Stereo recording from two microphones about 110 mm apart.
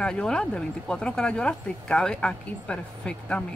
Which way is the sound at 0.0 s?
10° left (ahead or behind).